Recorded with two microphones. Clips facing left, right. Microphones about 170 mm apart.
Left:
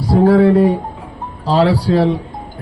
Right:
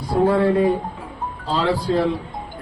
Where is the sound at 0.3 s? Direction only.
70° left (ahead or behind).